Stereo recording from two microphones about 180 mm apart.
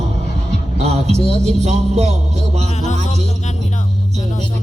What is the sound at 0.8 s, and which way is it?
A man's voice, 35° right (ahead or behind).